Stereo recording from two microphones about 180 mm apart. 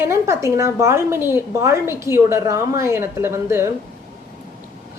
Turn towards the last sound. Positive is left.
turn(degrees=-15)  # may be behind; listen again after turning